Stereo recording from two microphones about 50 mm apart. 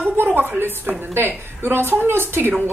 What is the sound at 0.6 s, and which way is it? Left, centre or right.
Speech, right.